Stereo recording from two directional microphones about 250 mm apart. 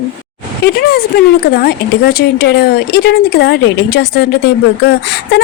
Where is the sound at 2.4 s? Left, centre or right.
Left.